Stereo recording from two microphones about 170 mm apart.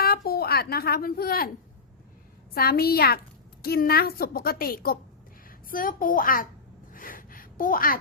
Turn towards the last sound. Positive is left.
turn(degrees=55)  # may be behind; listen again after turning